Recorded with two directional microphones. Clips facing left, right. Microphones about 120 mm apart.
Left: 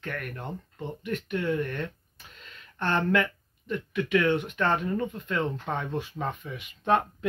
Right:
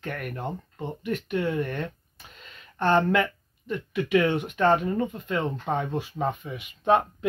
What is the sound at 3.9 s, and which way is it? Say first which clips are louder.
Speech: right 2 dB; 15° right (ahead or behind).